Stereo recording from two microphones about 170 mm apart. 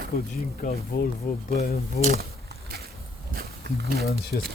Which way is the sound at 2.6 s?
65° right (ahead or behind).